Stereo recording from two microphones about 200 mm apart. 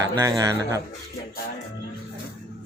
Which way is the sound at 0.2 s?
15° right (ahead or behind).